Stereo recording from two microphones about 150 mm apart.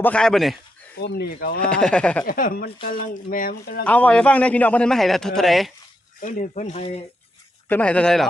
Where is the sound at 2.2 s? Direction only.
70° left (ahead or behind).